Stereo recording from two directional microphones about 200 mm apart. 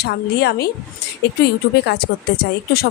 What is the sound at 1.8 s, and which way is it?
Speech, 55° left (ahead or behind).